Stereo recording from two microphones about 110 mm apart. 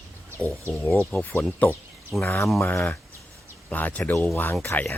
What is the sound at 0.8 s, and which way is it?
Speech, 20° left (ahead or behind).